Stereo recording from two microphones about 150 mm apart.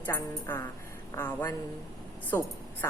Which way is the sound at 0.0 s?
15° left (ahead or behind).